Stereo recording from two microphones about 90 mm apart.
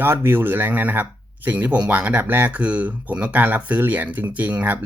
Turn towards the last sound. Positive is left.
turn(degrees=-15)  # may be behind; listen again after turning